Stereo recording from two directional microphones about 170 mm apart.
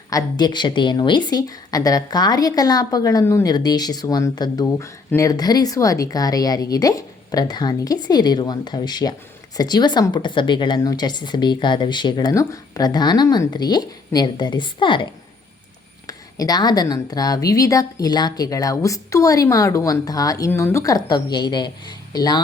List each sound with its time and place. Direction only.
0.1 s a woman's voice: 20° left (ahead or behind)